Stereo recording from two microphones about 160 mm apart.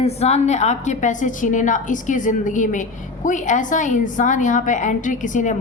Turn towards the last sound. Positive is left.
turn(degrees=50)  # may be behind; listen again after turning